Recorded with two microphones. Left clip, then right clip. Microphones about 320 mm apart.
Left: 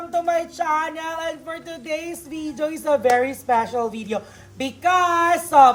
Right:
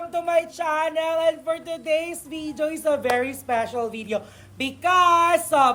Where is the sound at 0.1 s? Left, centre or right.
Centre.